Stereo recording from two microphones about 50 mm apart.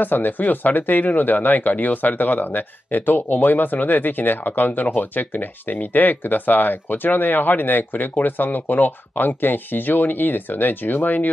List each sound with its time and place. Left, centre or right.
0.0 s speech: left